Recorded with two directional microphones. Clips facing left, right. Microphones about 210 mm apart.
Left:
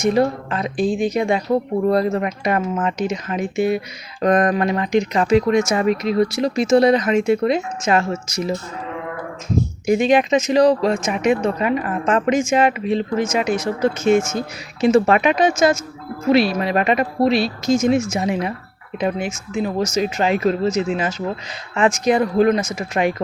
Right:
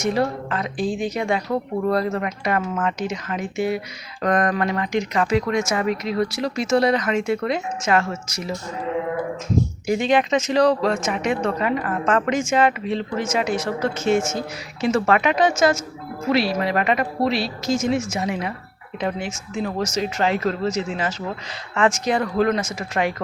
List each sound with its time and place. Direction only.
0.0 s speech: 20° left (ahead or behind)
9.8 s speech: 20° left (ahead or behind)